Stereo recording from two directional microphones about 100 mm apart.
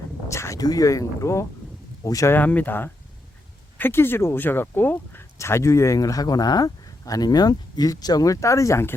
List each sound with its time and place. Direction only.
0.3 s speech: 30° left (ahead or behind)
2.3 s speech: 15° left (ahead or behind)